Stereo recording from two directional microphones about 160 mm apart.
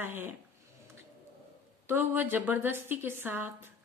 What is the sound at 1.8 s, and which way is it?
A woman's voice, 10° right (ahead or behind).